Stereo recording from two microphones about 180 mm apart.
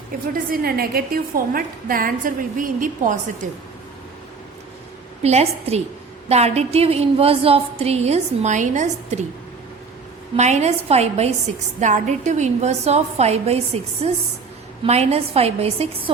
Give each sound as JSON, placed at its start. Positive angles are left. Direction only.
{"t": 0.5, "sound": "a woman's voice", "side_deg": -55}
{"t": 5.2, "sound": "a woman's voice", "side_deg": -35}
{"t": 10.3, "sound": "a woman's voice", "side_deg": -40}